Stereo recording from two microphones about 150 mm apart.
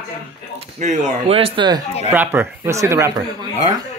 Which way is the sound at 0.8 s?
55° right (ahead or behind).